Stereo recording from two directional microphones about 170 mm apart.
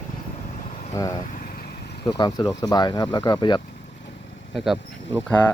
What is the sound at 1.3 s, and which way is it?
Vehicle, 55° left (ahead or behind).